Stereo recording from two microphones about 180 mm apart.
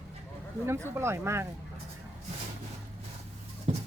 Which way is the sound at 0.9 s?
15° right (ahead or behind).